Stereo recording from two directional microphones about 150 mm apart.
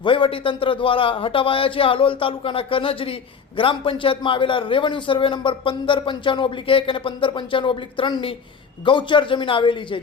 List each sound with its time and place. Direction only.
0.0 s a man's voice: 35° left (ahead or behind)